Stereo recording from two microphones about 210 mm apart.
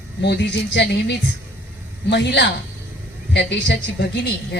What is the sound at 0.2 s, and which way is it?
A woman's voice, 55° left (ahead or behind).